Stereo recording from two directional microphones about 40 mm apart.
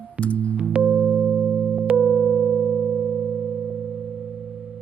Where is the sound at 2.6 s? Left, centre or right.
Centre.